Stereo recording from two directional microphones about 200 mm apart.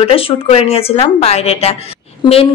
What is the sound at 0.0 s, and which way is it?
A woman's voice, 30° left (ahead or behind).